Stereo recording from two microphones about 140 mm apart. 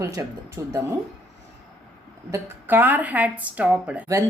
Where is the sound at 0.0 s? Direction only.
20° right (ahead or behind).